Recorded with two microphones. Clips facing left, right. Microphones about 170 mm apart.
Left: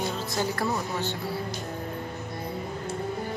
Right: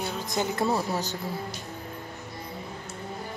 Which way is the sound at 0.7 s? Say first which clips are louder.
Right 2 dB; 40° right (ahead or behind).